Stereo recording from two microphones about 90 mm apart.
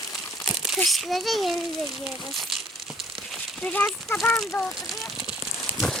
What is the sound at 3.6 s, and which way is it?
Speech, 15° left (ahead or behind).